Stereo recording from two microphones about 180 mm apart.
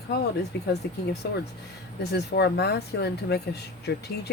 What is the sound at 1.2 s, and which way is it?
Speech, 70° left (ahead or behind).